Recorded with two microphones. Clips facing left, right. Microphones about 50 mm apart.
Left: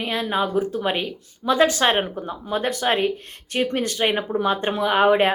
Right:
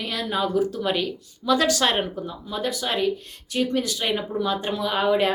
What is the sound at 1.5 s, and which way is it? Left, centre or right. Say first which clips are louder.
A woman's voice: left 3 dB; left.